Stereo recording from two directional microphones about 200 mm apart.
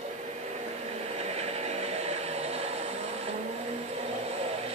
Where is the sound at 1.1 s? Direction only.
30° right (ahead or behind).